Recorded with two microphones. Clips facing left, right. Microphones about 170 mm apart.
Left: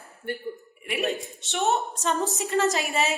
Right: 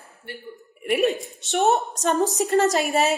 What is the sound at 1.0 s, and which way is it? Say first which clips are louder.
Speech: right 5 dB; centre (ahead or behind).